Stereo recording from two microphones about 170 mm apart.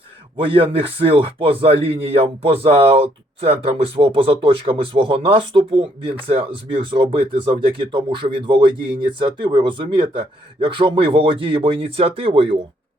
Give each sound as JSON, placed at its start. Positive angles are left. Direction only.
{"t": 0.3, "sound": "a man's voice", "side_deg": -30}